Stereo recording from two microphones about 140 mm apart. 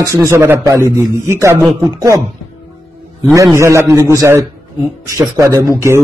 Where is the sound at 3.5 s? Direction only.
20° right (ahead or behind).